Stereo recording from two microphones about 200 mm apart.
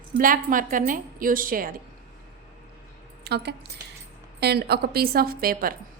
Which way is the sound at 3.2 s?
55° right (ahead or behind).